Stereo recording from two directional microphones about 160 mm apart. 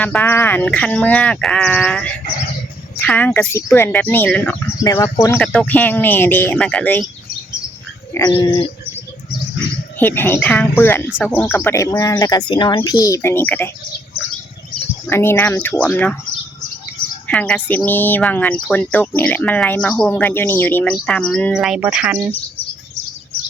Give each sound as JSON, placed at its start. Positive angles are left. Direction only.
{"t": 0.0, "sound": "speech", "side_deg": 10}
{"t": 10.0, "sound": "speech", "side_deg": 15}
{"t": 15.1, "sound": "speech", "side_deg": 15}
{"t": 17.2, "sound": "speech", "side_deg": 10}